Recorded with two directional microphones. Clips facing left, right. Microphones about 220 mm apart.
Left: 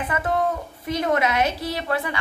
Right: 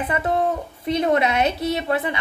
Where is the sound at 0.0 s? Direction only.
25° right (ahead or behind).